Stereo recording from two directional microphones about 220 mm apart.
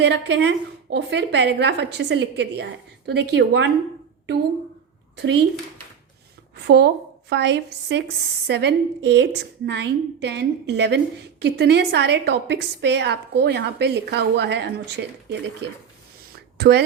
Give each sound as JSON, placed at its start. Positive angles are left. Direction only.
{"t": 0.0, "sound": "a woman's voice", "side_deg": -50}
{"t": 5.1, "sound": "speech", "side_deg": -50}
{"t": 6.6, "sound": "a woman's voice", "side_deg": -50}